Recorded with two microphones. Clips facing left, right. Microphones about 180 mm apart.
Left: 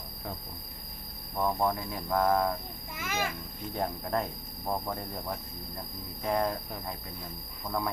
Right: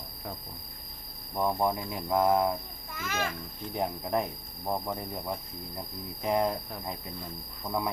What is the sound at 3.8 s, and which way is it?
Speech, 15° right (ahead or behind).